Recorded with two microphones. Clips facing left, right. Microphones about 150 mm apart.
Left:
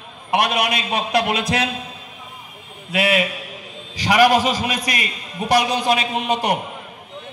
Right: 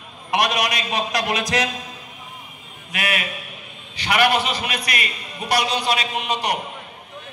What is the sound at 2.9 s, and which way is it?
A man's voice, 30° left (ahead or behind).